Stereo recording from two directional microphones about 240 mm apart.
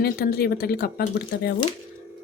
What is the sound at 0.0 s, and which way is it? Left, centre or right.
Speech, left.